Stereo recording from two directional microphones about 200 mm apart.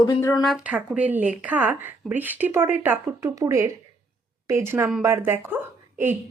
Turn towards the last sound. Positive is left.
turn(degrees=-10)  # may be behind; listen again after turning